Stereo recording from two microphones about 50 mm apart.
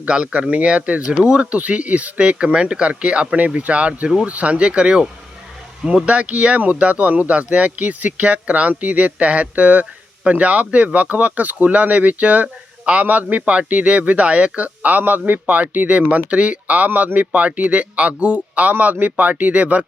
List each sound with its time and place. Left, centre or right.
0.0 s speech: right
6.1 s speech: right